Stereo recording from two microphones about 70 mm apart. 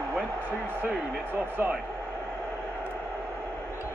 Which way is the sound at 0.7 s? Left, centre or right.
Right.